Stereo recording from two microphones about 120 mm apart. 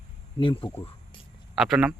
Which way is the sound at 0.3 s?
45° left (ahead or behind).